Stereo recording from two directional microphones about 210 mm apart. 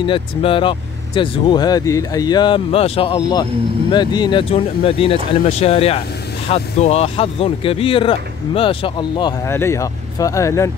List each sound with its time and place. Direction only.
0.0 s speech: 25° left (ahead or behind)